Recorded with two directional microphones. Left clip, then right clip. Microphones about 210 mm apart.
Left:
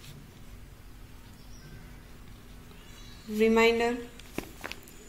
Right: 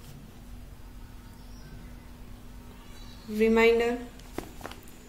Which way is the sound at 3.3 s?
15° left (ahead or behind).